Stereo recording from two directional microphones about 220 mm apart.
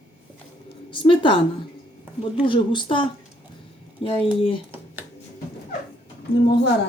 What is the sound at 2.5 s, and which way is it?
Speech, 20° left (ahead or behind).